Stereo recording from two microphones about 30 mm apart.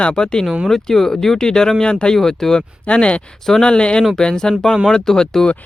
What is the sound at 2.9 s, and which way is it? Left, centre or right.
Speech, left.